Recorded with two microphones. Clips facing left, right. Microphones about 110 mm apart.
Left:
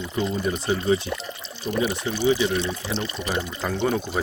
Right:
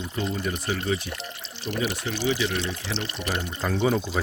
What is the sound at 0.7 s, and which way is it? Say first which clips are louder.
Speech: left 7 dB; 30° left (ahead or behind).